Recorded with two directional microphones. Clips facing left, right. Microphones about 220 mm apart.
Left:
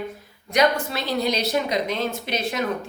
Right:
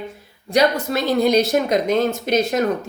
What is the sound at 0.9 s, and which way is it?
Speech, 45° right (ahead or behind).